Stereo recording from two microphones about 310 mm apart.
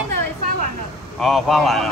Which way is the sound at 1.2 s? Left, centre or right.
Centre.